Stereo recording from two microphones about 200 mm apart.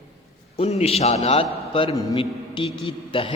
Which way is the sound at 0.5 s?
30° left (ahead or behind).